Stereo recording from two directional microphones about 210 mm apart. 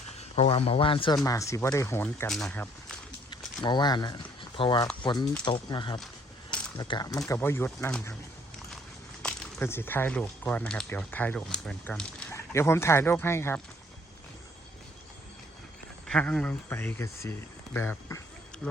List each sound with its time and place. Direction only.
0.2 s speech: 25° left (ahead or behind); by 3.0 s 5° left (ahead or behind)
3.6 s speech: 20° left (ahead or behind)
9.2 s speech: 5° left (ahead or behind)
16.0 s speech: 5° left (ahead or behind)